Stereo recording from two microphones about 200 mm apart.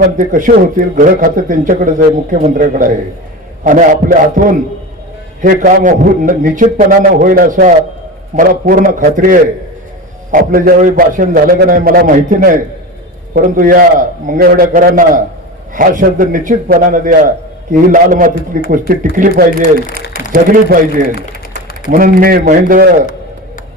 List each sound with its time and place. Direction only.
0.2 s a man's voice: 40° right (ahead or behind)